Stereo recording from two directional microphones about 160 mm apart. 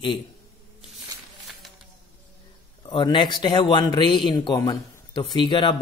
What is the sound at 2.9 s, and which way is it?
A man's voice, 30° left (ahead or behind).